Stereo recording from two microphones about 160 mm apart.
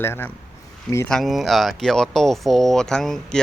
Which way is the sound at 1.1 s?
Centre (ahead or behind).